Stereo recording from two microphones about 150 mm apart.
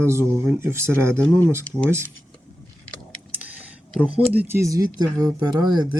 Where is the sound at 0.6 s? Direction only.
15° right (ahead or behind).